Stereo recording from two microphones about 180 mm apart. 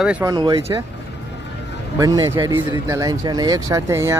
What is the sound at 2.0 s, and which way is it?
Speech, 20° right (ahead or behind).